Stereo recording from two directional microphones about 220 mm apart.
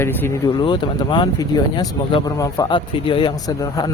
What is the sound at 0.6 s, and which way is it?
Speech, 20° left (ahead or behind).